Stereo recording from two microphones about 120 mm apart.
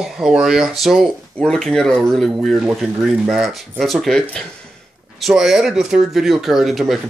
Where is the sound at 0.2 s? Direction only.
5° right (ahead or behind).